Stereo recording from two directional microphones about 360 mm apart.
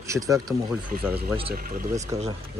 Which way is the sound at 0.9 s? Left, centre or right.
Right.